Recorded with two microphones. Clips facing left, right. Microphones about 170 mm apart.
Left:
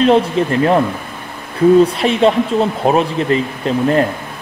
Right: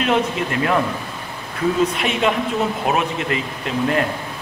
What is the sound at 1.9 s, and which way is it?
Speech, 30° left (ahead or behind).